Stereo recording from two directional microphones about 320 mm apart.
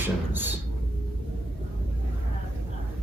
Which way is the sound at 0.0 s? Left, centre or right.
Centre.